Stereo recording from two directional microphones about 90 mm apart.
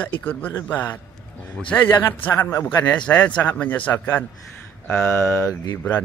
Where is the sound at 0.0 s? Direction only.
20° left (ahead or behind).